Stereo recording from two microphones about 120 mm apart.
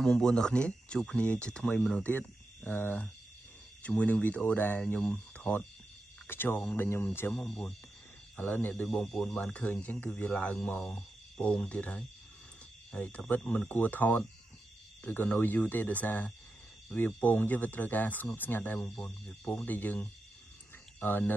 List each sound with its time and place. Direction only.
0.0 s speech: 5° left (ahead or behind)